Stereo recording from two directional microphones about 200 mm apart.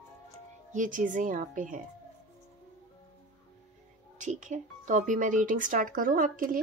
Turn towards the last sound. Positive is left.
turn(degrees=-45)  # may be behind; listen again after turning